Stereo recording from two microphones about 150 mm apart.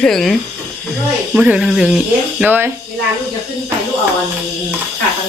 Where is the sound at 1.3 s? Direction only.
5° right (ahead or behind).